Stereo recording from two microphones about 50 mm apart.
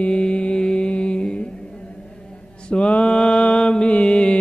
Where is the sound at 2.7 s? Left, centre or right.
Left.